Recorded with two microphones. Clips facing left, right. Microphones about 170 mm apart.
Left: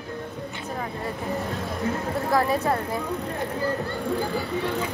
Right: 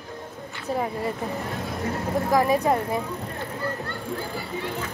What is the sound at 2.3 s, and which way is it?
Speech, 15° right (ahead or behind).